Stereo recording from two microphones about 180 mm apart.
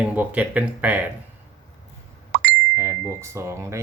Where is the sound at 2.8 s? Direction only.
15° right (ahead or behind).